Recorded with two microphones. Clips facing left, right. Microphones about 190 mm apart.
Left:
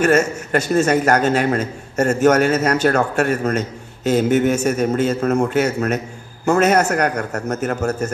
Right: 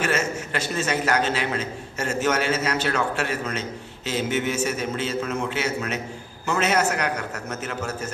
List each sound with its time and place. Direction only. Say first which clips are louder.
0.0 s a man's voice: left 9 dB; 50° left (ahead or behind)